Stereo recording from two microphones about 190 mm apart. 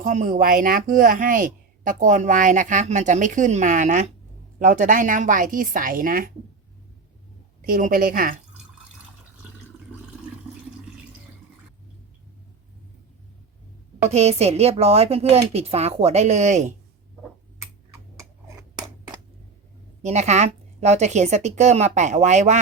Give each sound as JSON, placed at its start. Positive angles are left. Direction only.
{"t": 0.0, "sound": "a woman's voice", "side_deg": -45}
{"t": 7.6, "sound": "a woman's voice", "side_deg": -50}
{"t": 14.1, "sound": "speech", "side_deg": -35}
{"t": 20.1, "sound": "speech", "side_deg": -35}